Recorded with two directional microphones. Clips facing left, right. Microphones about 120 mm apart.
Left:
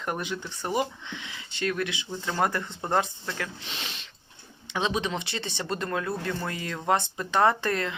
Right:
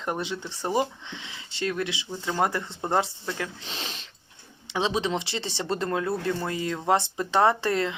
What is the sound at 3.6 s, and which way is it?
Speech, 35° right (ahead or behind).